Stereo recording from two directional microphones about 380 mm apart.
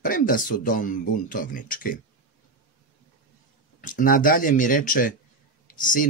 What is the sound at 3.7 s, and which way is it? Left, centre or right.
Speech, left.